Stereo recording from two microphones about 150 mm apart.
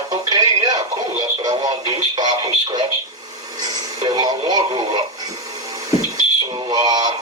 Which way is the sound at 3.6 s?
25° right (ahead or behind).